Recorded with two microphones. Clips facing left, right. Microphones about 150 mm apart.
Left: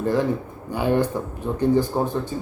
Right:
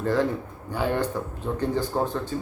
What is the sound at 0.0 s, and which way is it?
Speech, 15° left (ahead or behind).